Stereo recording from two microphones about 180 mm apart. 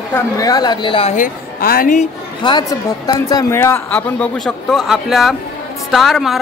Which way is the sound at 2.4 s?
25° left (ahead or behind).